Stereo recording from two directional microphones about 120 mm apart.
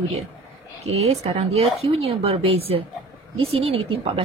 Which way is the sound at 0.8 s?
60° right (ahead or behind).